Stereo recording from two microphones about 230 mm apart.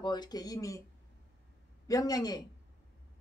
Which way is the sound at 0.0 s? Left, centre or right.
Centre.